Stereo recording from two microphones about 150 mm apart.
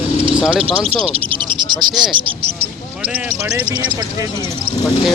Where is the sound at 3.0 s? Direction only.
10° right (ahead or behind).